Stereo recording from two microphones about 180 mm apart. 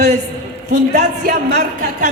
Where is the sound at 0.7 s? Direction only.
40° right (ahead or behind).